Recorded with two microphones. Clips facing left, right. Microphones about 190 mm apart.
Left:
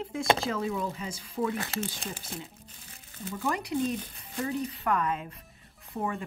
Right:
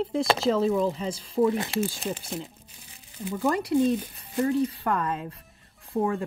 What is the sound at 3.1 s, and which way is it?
Speech, 15° right (ahead or behind).